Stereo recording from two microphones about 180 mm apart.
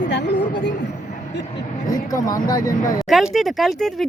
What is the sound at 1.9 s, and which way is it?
Speech, 20° left (ahead or behind).